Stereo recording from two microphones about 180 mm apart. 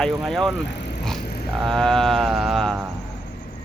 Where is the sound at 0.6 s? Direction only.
70° left (ahead or behind).